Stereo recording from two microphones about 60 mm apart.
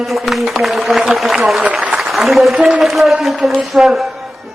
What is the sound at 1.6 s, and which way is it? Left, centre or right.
Speech, centre.